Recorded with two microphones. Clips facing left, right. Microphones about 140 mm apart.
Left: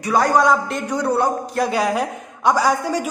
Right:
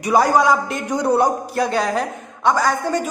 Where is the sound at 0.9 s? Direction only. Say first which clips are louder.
Right 3 dB; 15° right (ahead or behind).